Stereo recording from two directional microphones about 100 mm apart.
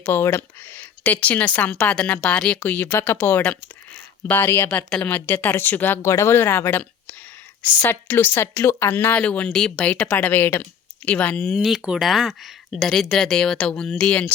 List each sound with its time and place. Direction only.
0.0 s speech: 20° left (ahead or behind)
11.5 s speech: 5° right (ahead or behind)